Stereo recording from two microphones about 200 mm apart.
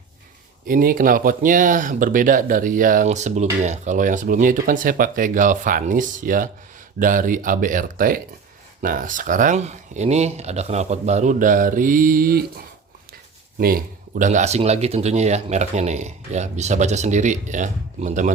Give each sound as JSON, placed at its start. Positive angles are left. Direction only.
{"t": 0.7, "sound": "speech", "side_deg": -45}